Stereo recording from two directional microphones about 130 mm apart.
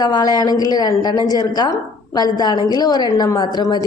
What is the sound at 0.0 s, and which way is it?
A woman's voice, 30° left (ahead or behind).